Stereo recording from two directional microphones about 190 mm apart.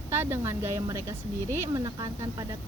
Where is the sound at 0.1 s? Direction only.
15° right (ahead or behind).